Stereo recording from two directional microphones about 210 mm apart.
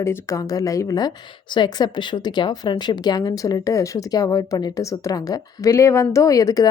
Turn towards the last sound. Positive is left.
turn(degrees=15)  # may be behind; listen again after turning